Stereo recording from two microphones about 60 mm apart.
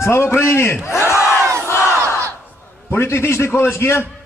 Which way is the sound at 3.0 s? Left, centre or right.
Left.